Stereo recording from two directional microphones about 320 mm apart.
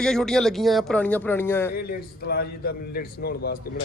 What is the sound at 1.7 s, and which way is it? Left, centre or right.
A man's voice, left.